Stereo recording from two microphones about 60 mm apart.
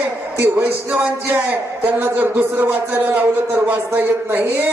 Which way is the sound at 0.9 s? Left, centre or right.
Right.